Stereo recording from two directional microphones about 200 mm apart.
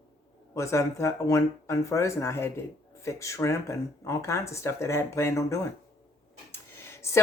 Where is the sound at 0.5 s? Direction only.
15° left (ahead or behind).